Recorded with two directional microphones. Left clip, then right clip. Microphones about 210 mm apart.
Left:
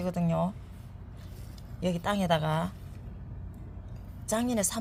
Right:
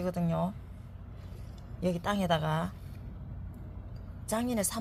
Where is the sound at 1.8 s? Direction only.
10° left (ahead or behind).